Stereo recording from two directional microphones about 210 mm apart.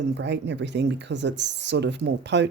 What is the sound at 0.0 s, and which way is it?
Speech, 55° right (ahead or behind).